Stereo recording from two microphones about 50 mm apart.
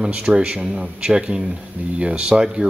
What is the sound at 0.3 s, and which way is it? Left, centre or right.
Speech, right.